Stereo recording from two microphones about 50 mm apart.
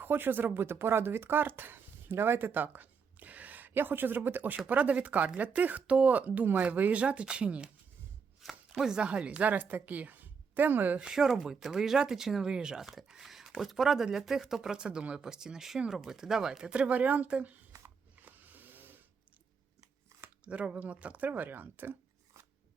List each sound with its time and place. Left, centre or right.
0.0 s speech: right
4.5 s a woman's voice: right
8.4 s chopping: centre
9.0 s a woman's voice: right
11.1 s speech: centre
12.8 s speech: centre; by 17.6 s right
17.8 s a sound: right
20.4 s speech: right